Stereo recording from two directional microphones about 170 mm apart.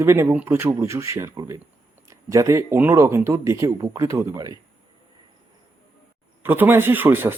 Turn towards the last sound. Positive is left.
turn(degrees=-10)  # may be behind; listen again after turning